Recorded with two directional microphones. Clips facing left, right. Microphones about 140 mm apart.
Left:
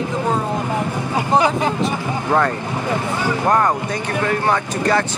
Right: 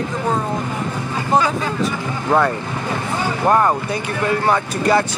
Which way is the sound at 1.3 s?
20° left (ahead or behind).